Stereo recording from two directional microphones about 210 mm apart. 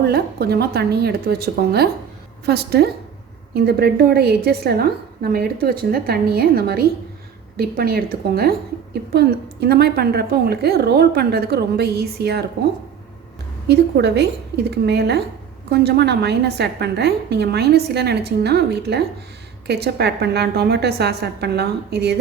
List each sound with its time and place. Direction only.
0.0 s a woman's voice: 50° right (ahead or behind)
13.7 s a woman's voice: 55° right (ahead or behind)